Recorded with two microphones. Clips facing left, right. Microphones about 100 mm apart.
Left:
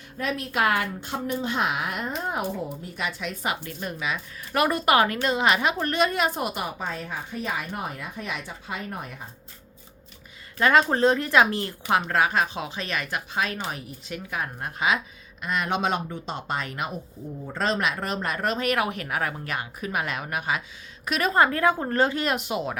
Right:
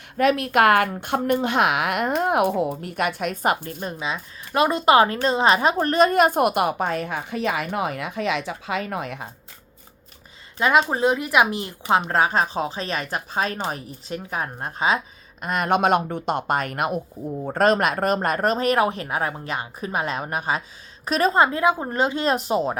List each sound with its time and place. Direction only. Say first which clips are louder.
0.2 s speech: right 8 dB; 70° right (ahead or behind); by 3.8 s 45° right (ahead or behind)
3.8 s a woman's voice: right 2 dB; 30° right (ahead or behind); by 9.3 s 90° right
10.6 s speech: right 1 dB; 20° right (ahead or behind)
15.4 s speech: right 5 dB; 45° right (ahead or behind)
21.3 s a woman's voice: left 1 dB; 20° right (ahead or behind)
22.2 s speech: right 5 dB; 35° right (ahead or behind)